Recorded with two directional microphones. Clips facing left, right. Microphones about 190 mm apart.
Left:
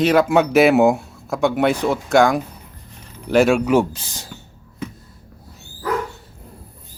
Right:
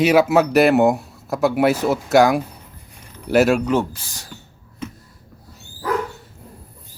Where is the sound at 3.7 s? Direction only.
20° left (ahead or behind).